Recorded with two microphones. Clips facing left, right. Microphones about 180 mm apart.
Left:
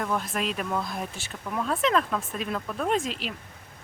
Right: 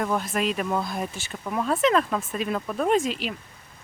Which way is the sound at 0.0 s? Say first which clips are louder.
Right 3 dB; 5° right (ahead or behind).